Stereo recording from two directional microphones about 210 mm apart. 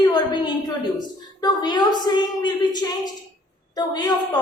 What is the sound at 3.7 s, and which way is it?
Speech, 20° left (ahead or behind).